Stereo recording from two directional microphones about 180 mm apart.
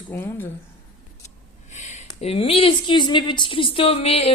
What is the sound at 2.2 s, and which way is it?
Speech, 30° left (ahead or behind).